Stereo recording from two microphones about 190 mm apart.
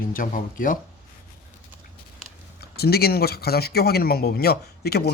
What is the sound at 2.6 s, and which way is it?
Speech, 55° left (ahead or behind).